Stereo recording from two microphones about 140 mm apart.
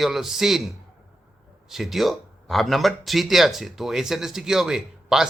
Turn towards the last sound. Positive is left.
turn(degrees=-5)  # may be behind; listen again after turning